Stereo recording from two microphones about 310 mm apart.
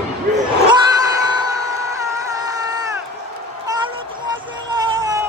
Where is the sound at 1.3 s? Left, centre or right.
Centre.